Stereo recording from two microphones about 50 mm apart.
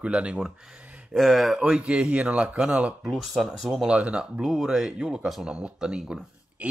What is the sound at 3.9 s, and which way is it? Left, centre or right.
Speech, right.